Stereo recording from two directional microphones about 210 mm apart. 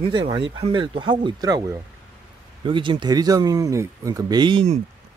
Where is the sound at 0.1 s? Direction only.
25° right (ahead or behind).